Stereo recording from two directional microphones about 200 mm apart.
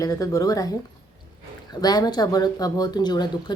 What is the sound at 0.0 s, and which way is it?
Speech, 15° left (ahead or behind).